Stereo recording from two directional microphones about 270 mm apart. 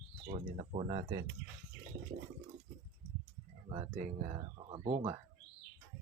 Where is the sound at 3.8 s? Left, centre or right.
Right.